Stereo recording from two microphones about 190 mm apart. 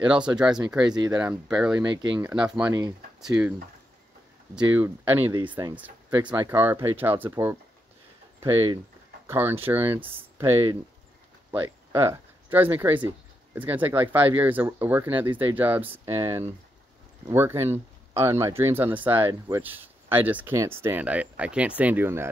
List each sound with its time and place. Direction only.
0.0 s speech: 5° right (ahead or behind)
0.8 s speech: 20° right (ahead or behind)
1.1 s speech: 5° right (ahead or behind)
1.9 s speech: 20° right (ahead or behind)
2.2 s speech: 5° right (ahead or behind)
4.6 s speech: 10° right (ahead or behind)
9.3 s speech: 10° right (ahead or behind)